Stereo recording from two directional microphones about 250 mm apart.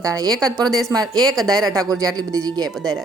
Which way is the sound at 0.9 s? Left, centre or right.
Centre.